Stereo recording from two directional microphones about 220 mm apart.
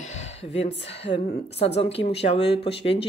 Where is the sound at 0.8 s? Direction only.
25° left (ahead or behind).